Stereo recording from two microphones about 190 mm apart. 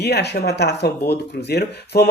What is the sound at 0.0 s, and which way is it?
Speech, 60° left (ahead or behind).